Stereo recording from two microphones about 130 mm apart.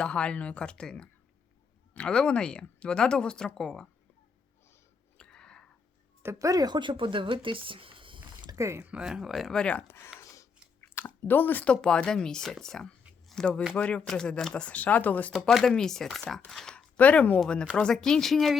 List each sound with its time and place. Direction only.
0.0 s speech: 5° left (ahead or behind)
5.1 s a sound: 5° left (ahead or behind)
6.2 s speech: 25° right (ahead or behind)
8.5 s speech: 20° right (ahead or behind); by 10.1 s 20° left (ahead or behind)
10.2 s chewing: 20° left (ahead or behind)
13.7 s speech: 10° left (ahead or behind)